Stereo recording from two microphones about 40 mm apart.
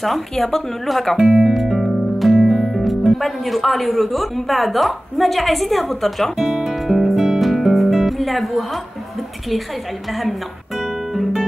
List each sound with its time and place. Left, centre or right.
0.0 s a woman's voice: centre
1.5 s music: centre
3.1 s a woman's voice: centre
6.5 s music: centre